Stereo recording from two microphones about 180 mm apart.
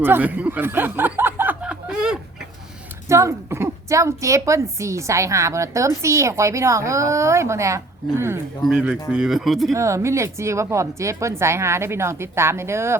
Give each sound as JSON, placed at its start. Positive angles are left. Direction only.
{"t": 0.0, "sound": "snicker", "side_deg": -10}
{"t": 3.1, "sound": "a woman's voice", "side_deg": -15}
{"t": 9.7, "sound": "a woman's voice", "side_deg": -15}